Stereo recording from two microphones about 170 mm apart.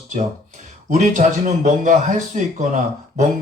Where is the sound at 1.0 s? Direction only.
45° right (ahead or behind).